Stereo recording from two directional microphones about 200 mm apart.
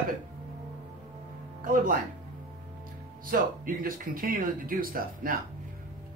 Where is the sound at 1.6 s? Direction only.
45° right (ahead or behind).